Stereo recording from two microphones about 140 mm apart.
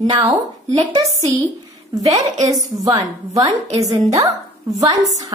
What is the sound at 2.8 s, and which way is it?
A woman's voice, 25° right (ahead or behind).